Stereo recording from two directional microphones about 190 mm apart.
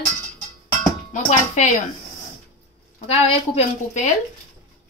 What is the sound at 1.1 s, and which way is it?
Speech, 35° left (ahead or behind).